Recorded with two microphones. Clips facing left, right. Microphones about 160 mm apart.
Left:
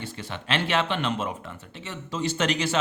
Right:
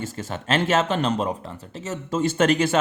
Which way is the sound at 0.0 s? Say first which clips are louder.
Right 5 dB; 45° right (ahead or behind).